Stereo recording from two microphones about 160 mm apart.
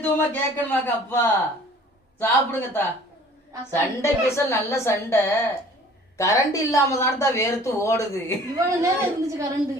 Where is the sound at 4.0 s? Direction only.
15° left (ahead or behind).